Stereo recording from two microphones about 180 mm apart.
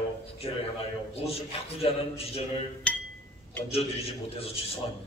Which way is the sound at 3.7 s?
35° left (ahead or behind).